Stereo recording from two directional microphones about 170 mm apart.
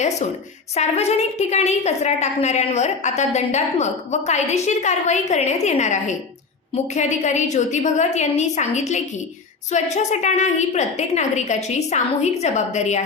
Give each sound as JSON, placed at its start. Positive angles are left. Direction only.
{"t": 0.8, "sound": "a woman's voice", "side_deg": 40}